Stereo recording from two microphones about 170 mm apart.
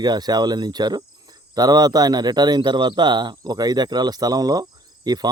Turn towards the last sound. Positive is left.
turn(degrees=-25)  # may be behind; listen again after turning